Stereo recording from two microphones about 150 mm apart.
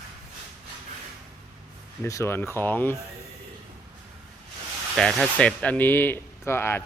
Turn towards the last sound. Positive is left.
turn(degrees=15)  # may be behind; listen again after turning